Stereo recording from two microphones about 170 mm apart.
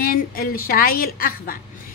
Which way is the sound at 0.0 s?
60° left (ahead or behind).